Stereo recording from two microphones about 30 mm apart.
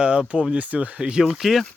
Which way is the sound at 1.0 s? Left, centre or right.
Right.